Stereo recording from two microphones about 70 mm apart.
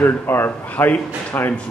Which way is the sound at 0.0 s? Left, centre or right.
Left.